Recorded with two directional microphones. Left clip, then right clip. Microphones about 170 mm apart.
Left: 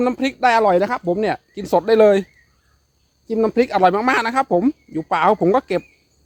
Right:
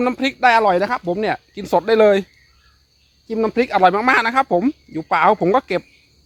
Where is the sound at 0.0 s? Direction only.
5° right (ahead or behind).